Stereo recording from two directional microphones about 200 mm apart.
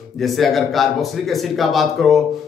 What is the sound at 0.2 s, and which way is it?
A man's voice, centre (ahead or behind).